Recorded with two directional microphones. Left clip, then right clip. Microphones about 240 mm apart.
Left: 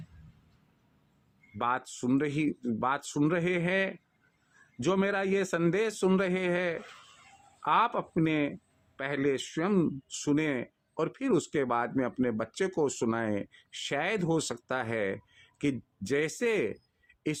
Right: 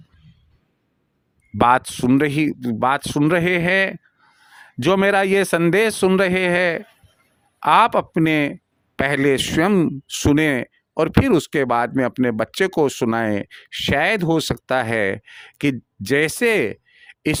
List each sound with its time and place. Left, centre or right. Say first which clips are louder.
1.5 s speech: right 15 dB; right